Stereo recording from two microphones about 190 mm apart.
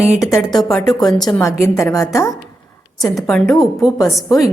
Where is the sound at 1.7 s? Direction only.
15° left (ahead or behind).